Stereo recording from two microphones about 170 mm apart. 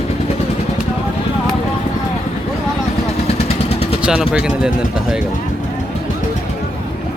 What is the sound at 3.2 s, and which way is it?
Vehicle, 35° left (ahead or behind).